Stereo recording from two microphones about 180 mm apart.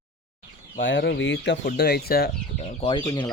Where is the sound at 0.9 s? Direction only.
85° left; by 2.3 s 55° left (ahead or behind).